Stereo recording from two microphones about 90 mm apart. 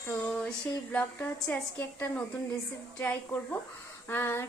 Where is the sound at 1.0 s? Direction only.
20° left (ahead or behind).